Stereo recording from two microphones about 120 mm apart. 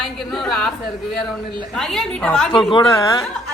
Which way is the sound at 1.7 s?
Centre (ahead or behind).